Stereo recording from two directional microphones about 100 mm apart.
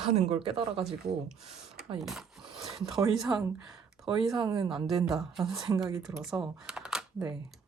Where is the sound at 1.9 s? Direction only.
5° right (ahead or behind).